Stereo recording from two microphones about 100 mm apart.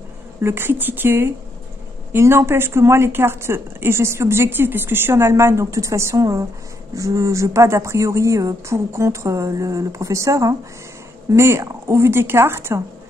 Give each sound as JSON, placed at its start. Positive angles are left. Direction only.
{"t": 0.4, "sound": "a woman's voice", "side_deg": -25}